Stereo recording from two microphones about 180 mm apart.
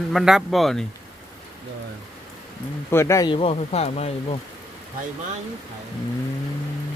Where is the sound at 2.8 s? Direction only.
15° left (ahead or behind).